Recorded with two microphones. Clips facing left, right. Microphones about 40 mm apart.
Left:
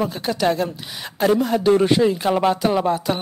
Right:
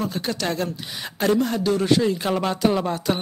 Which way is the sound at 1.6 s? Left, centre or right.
Left.